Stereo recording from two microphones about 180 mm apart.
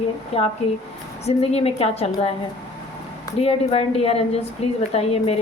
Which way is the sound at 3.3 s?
35° left (ahead or behind).